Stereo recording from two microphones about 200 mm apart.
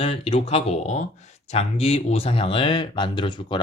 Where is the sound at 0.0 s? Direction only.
30° left (ahead or behind).